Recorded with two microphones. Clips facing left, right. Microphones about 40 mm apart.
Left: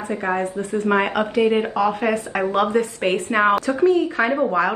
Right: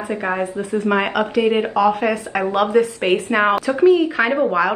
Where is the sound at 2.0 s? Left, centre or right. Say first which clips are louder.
Right 1 dB; centre.